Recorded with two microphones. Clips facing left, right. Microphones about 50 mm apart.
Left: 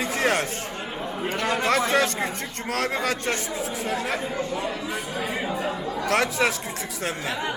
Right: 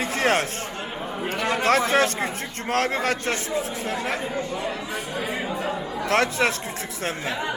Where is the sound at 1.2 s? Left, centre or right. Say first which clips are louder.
Right 1 dB; centre.